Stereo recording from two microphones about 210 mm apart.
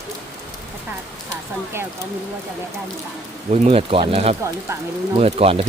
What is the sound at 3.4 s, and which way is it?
Speech, 30° right (ahead or behind).